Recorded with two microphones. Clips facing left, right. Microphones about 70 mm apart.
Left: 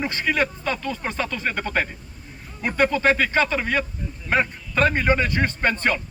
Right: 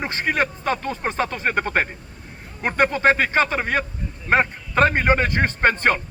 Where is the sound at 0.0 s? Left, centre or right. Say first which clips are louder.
Even; right.